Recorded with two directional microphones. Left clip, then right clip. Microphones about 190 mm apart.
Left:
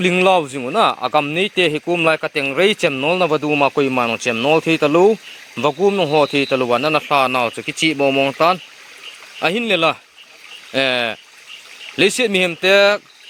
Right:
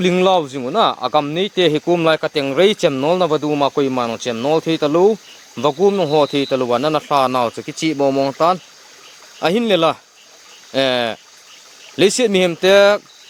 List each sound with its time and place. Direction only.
0.0 s speech: centre (ahead or behind)